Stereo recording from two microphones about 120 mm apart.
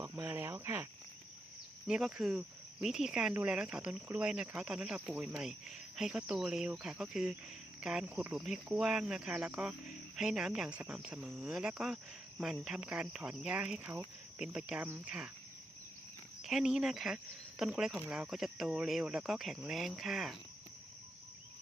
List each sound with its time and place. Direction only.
0.0 s cricket: 20° right (ahead or behind)
1.9 s speech: 5° right (ahead or behind)
3.3 s cricket: 10° right (ahead or behind)
6.0 s speech: 5° right (ahead or behind)
7.8 s cricket: 5° right (ahead or behind)
16.4 s speech: 5° right (ahead or behind)